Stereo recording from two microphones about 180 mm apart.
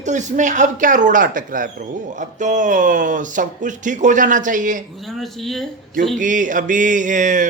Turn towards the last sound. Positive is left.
turn(degrees=-45)  # may be behind; listen again after turning